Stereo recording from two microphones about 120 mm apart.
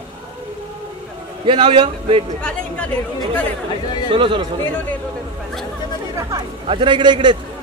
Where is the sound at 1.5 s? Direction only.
45° right (ahead or behind).